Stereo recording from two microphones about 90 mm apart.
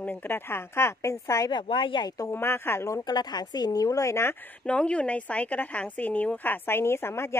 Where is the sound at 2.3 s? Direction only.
25° left (ahead or behind).